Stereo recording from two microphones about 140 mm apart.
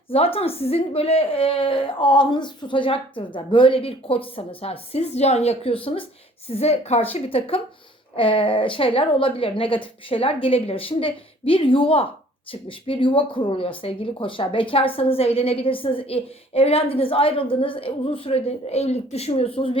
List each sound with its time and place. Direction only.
0.1 s a woman's voice: 45° left (ahead or behind)